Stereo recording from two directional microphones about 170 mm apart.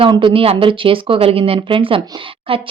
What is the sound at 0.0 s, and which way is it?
A woman's voice, 30° right (ahead or behind).